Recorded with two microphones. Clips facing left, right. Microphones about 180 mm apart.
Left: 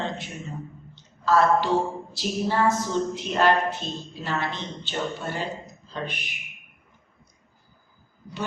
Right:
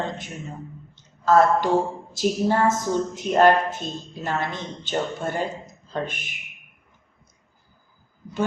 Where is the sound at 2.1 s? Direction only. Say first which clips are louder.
Right 5 dB; 45° right (ahead or behind).